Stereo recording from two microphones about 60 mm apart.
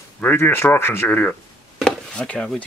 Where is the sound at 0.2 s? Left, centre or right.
Left.